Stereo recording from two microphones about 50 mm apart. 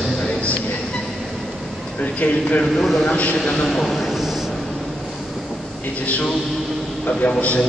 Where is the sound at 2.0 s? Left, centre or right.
Left.